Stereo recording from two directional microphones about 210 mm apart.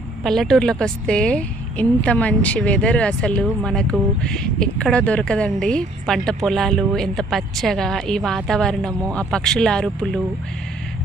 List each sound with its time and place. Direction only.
0.2 s a woman's voice: centre (ahead or behind)